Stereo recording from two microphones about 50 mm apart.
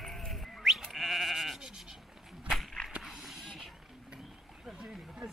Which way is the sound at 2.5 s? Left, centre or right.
Centre.